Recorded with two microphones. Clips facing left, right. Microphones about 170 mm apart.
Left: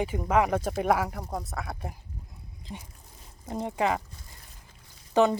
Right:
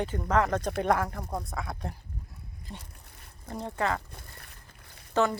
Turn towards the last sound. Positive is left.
turn(degrees=15)  # may be behind; listen again after turning